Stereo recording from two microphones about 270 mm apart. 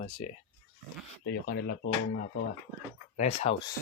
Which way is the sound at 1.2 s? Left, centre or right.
Left.